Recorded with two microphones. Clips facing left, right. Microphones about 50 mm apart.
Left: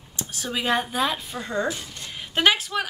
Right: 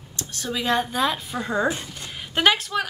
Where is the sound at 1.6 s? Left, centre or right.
Right.